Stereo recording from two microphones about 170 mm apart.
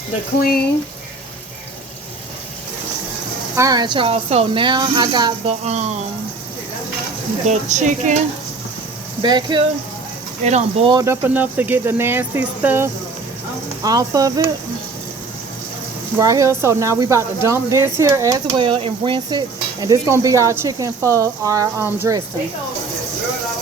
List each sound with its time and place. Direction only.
3.5 s speech: 20° right (ahead or behind)
5.6 s speech: 40° right (ahead or behind)
7.4 s speech: 45° right (ahead or behind)
9.2 s speech: 25° right (ahead or behind)
10.4 s speech: 40° right (ahead or behind)
10.9 s speech: 15° right (ahead or behind)
16.1 s speech: 20° right (ahead or behind)